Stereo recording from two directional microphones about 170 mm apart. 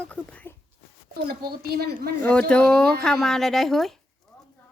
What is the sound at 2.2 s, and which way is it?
Speech, 5° left (ahead or behind).